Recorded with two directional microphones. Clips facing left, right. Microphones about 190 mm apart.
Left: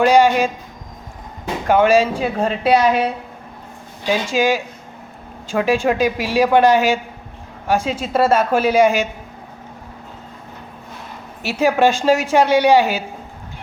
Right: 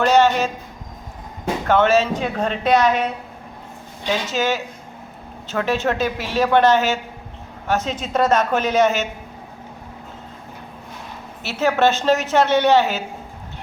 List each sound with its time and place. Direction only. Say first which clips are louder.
0.0 s speech: left 3 dB; 10° left (ahead or behind)
1.6 s speech: left 3 dB; 10° left (ahead or behind)
4.1 s speech: left 4 dB; 10° left (ahead or behind)
11.4 s speech: left 2 dB; 10° left (ahead or behind)